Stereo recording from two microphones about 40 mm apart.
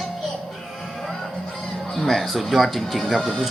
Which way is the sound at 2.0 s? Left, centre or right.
Centre.